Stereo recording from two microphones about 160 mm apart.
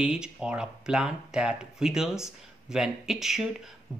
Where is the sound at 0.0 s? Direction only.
5° right (ahead or behind).